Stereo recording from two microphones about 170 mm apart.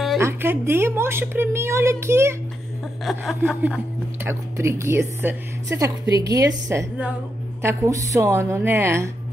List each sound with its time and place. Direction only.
0.2 s speech: 15° right (ahead or behind)
3.1 s a woman's voice: 5° right (ahead or behind)